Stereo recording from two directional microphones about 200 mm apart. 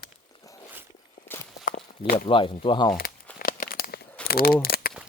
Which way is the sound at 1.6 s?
45° left (ahead or behind).